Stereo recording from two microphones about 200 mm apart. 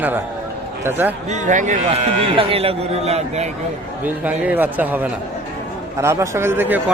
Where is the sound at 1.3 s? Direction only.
40° right (ahead or behind).